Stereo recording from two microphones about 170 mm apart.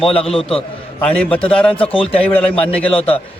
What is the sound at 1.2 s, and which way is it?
Speech, 5° left (ahead or behind).